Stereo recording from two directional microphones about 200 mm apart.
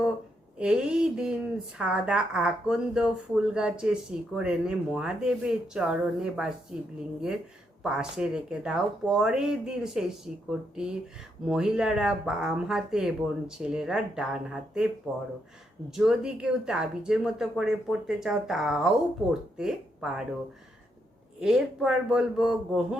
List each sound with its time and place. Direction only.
0.6 s speech: 5° right (ahead or behind)
21.4 s speech: 5° right (ahead or behind)